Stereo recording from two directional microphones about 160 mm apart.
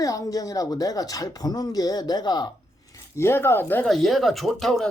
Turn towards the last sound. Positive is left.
turn(degrees=0)  # may be behind; listen again after turning